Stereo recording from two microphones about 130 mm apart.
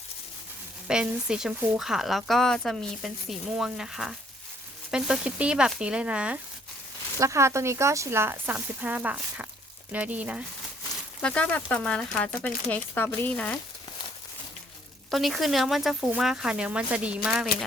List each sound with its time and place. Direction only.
0.9 s speech: 5° right (ahead or behind)
7.2 s speech: 25° right (ahead or behind)
11.2 s speech: 10° left (ahead or behind)
15.1 s speech: centre (ahead or behind)